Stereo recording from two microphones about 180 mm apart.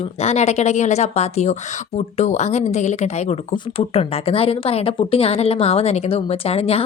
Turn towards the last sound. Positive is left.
turn(degrees=35)  # may be behind; listen again after turning